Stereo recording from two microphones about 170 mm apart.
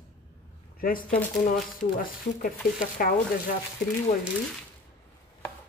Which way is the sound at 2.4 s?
55° left (ahead or behind).